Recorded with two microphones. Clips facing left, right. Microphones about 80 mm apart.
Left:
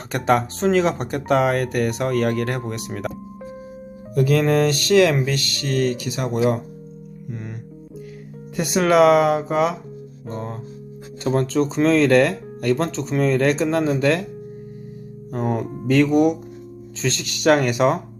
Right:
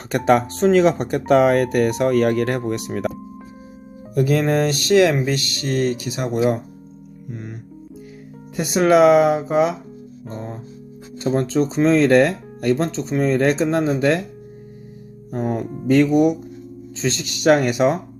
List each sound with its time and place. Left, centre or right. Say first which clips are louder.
0.1 s speech: right 3 dB; centre
4.1 s speech: even; centre
8.8 s speech: right 2 dB; centre
11.3 s speech: right 1 dB; centre
15.4 s speech: even; centre
17.0 s speech: right 1 dB; centre